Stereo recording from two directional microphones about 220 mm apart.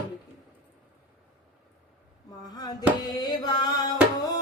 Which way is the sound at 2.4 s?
15° left (ahead or behind).